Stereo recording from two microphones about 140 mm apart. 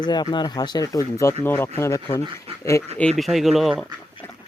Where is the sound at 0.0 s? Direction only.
30° left (ahead or behind).